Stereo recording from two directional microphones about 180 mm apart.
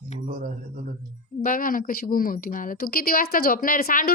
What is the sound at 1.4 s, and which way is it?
A woman's voice, 50° left (ahead or behind).